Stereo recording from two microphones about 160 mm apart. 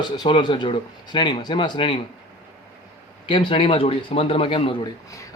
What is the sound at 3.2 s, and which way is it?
Speech, 30° left (ahead or behind).